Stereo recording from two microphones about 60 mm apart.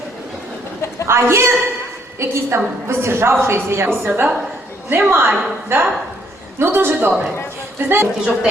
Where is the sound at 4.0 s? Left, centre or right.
Right.